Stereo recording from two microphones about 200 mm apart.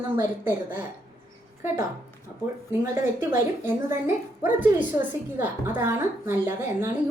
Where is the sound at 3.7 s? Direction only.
10° right (ahead or behind).